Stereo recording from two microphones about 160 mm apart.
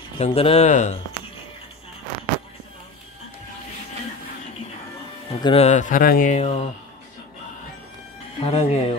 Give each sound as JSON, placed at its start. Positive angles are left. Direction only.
{"t": 0.2, "sound": "speech", "side_deg": 35}
{"t": 5.4, "sound": "speech", "side_deg": 40}
{"t": 8.4, "sound": "speech", "side_deg": 40}